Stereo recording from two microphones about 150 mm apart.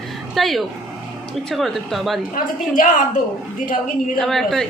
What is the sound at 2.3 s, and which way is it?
Speech, 65° left (ahead or behind).